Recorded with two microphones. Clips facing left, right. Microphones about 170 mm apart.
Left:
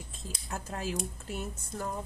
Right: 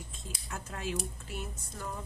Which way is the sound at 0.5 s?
35° left (ahead or behind).